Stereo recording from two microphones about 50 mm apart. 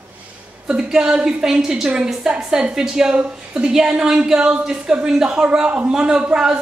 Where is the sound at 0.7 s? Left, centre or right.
Centre.